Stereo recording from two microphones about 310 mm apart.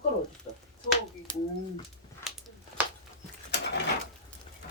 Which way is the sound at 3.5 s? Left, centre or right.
Left.